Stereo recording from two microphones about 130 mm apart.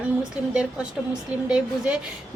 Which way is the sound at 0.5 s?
5° right (ahead or behind).